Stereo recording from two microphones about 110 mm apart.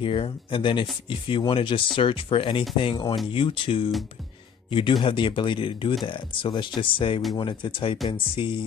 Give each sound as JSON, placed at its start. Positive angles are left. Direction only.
{"t": 0.0, "sound": "speech", "side_deg": 50}